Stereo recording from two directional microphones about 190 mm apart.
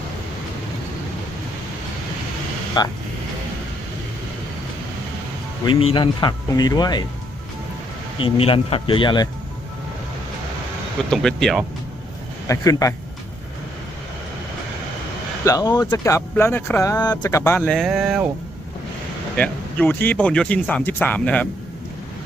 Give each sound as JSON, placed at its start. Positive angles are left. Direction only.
{"t": 2.8, "sound": "speech", "side_deg": 20}
{"t": 5.6, "sound": "speech", "side_deg": 30}
{"t": 8.2, "sound": "speech", "side_deg": 30}
{"t": 11.1, "sound": "speech", "side_deg": 0}
{"t": 12.5, "sound": "speech", "side_deg": 15}
{"t": 15.4, "sound": "speech", "side_deg": 20}
{"t": 17.7, "sound": "speech", "side_deg": 0}
{"t": 19.4, "sound": "speech", "side_deg": 10}